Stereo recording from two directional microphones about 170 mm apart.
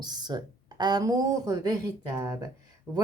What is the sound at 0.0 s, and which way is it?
Speech, 25° right (ahead or behind).